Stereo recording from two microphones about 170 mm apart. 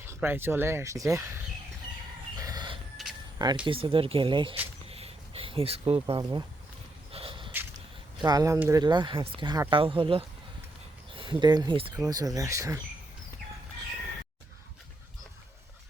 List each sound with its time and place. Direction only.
0.1 s speech: 15° right (ahead or behind)
2.4 s vehicle: 25° right (ahead or behind)
3.0 s a sound: centre (ahead or behind)
3.3 s speech: 25° right (ahead or behind)
4.9 s a sound: 35° right (ahead or behind)
8.2 s speech: 20° right (ahead or behind)
8.8 s speech: 25° right (ahead or behind)